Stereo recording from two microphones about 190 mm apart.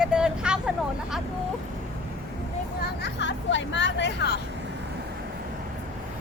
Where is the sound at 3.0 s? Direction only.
70° left (ahead or behind).